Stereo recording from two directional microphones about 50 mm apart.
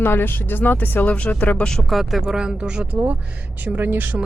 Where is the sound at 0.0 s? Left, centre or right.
Left.